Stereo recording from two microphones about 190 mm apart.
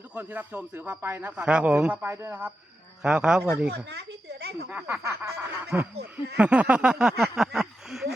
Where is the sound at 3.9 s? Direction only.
60° right (ahead or behind).